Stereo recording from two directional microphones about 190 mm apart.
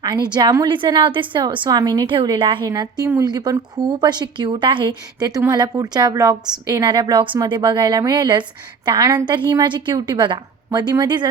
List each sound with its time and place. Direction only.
0.0 s a woman's voice: 20° right (ahead or behind)